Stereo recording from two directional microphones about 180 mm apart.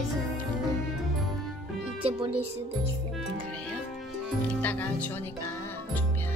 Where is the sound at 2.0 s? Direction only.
30° right (ahead or behind).